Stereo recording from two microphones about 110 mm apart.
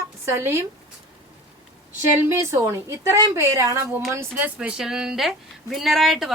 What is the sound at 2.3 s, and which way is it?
Speech, 25° right (ahead or behind).